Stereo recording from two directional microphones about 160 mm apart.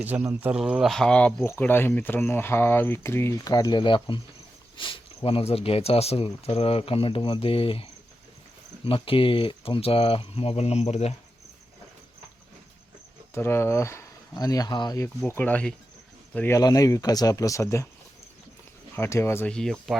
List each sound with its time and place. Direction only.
0.0 s speech: 10° right (ahead or behind); by 11.1 s 40° left (ahead or behind)
13.3 s speech: 15° left (ahead or behind)
15.0 s speech: 10° left (ahead or behind)
16.6 s speech: 20° left (ahead or behind)
18.9 s speech: 15° left (ahead or behind)